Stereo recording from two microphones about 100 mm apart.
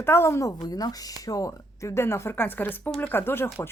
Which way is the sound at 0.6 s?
40° left (ahead or behind).